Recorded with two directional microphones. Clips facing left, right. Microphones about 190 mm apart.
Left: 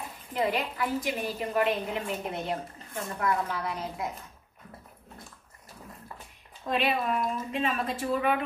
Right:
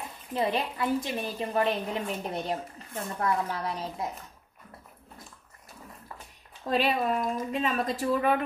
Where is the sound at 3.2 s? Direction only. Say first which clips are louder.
Even; 30° right (ahead or behind).